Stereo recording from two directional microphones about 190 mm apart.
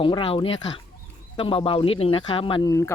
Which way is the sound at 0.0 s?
25° left (ahead or behind).